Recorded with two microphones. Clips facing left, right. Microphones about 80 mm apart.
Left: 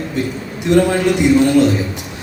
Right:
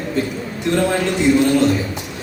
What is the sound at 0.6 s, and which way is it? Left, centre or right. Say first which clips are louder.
A man's voice: left 5 dB; centre.